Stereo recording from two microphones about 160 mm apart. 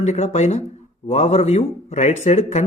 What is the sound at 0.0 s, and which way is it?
Speech, 45° left (ahead or behind).